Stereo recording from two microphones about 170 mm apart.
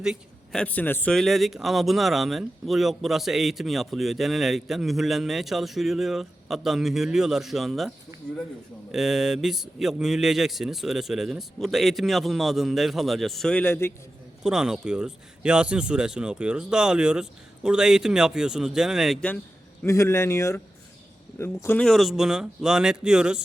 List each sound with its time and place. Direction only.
0.0 s a sound: 5° right (ahead or behind)
0.6 s speech: 10° left (ahead or behind)
14.4 s speech: 5° right (ahead or behind)
19.8 s speech: 15° left (ahead or behind); by 23.4 s 5° right (ahead or behind)